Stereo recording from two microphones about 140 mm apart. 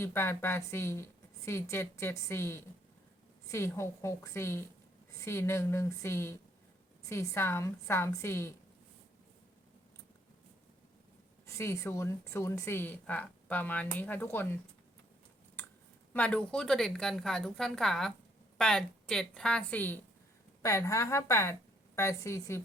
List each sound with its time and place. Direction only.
0.0 s a woman's voice: 15° left (ahead or behind)
11.4 s speech: 20° left (ahead or behind)
16.1 s a woman's voice: 10° left (ahead or behind)